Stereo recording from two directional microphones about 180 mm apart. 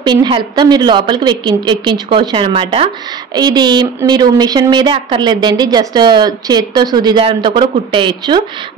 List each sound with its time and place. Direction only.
0.0 s a woman's voice: 25° right (ahead or behind)